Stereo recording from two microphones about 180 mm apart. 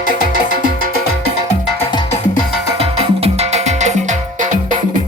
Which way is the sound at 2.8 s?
35° right (ahead or behind).